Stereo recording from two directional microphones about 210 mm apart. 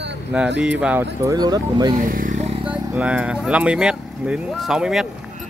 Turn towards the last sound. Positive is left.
turn(degrees=-5)  # may be behind; listen again after turning